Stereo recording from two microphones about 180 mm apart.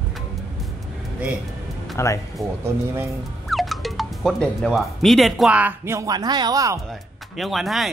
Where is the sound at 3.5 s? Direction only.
Centre (ahead or behind); by 6.8 s 20° right (ahead or behind).